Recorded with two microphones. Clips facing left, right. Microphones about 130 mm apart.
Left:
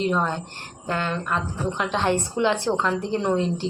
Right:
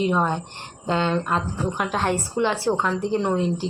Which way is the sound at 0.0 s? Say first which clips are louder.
Right 2 dB; 10° right (ahead or behind).